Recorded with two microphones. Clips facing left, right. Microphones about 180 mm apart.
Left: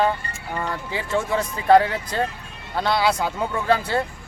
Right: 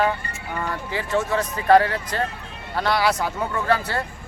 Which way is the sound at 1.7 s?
15° left (ahead or behind).